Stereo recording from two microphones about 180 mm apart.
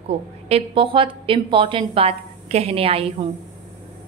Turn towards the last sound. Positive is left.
turn(degrees=-30)  # may be behind; listen again after turning